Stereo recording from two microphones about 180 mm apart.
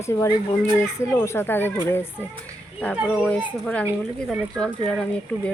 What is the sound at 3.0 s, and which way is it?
Speech, 5° right (ahead or behind).